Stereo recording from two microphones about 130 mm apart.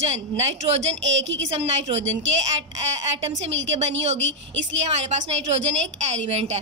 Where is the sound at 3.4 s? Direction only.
60° right (ahead or behind).